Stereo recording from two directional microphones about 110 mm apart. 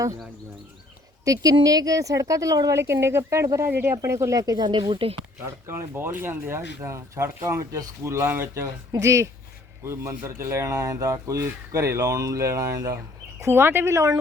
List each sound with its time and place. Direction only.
1.2 s a woman's voice: 30° right (ahead or behind)
4.8 s speech: 55° right (ahead or behind)
5.6 s speech: 20° right (ahead or behind)
13.4 s speech: 20° right (ahead or behind)